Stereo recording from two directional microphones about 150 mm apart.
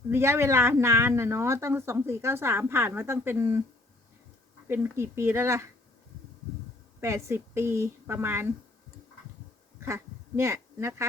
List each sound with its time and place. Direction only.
0.1 s speech: 15° right (ahead or behind)
4.7 s speech: 15° right (ahead or behind)
7.0 s speech: 20° right (ahead or behind)
9.8 s speech: 20° right (ahead or behind)